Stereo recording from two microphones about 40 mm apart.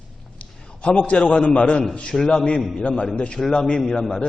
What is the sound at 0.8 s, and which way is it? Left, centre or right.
A man's voice, left.